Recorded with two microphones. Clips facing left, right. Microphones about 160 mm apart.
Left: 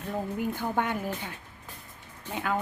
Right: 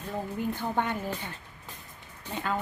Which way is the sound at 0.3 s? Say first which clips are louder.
Even; 10° left (ahead or behind).